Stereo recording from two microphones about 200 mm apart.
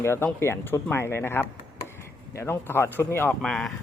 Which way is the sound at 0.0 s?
10° left (ahead or behind).